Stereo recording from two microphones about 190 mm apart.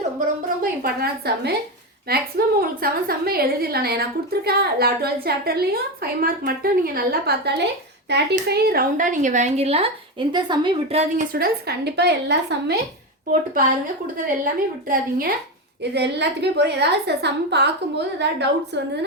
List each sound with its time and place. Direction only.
0.6 s a woman's voice: 50° right (ahead or behind)
2.6 s a woman's voice: 50° right (ahead or behind); by 11.0 s 25° right (ahead or behind)
11.2 s a woman's voice: 50° right (ahead or behind)
14.3 s a woman's voice: 45° right (ahead or behind)
15.8 s a woman's voice: 60° right (ahead or behind)